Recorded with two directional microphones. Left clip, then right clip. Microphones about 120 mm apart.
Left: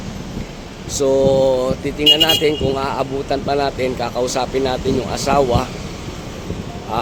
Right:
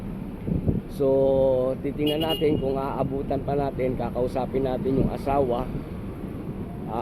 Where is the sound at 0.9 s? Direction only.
35° left (ahead or behind).